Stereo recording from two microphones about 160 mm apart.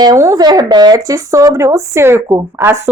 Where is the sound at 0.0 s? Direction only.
20° right (ahead or behind).